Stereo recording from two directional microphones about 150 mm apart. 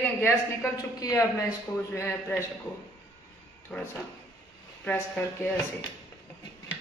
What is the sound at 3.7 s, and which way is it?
A man's voice, 5° left (ahead or behind).